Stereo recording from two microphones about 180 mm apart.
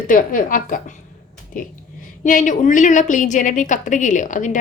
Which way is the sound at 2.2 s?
45° left (ahead or behind).